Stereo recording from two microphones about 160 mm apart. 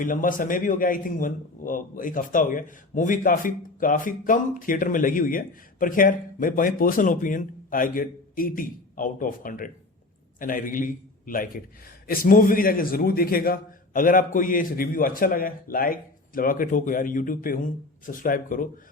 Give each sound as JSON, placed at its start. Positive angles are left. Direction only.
{"t": 0.0, "sound": "a man's voice", "side_deg": 55}